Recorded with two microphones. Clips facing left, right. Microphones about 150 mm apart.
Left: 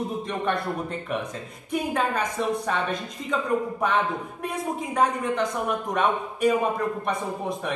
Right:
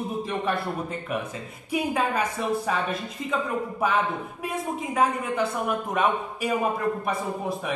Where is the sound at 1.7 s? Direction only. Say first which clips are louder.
Even; 5° right (ahead or behind).